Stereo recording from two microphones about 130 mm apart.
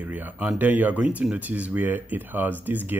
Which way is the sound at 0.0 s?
10° right (ahead or behind).